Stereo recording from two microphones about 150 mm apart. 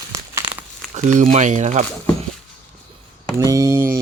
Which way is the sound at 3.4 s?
20° right (ahead or behind).